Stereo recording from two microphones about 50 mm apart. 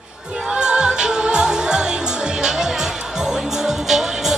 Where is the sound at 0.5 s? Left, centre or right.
Centre.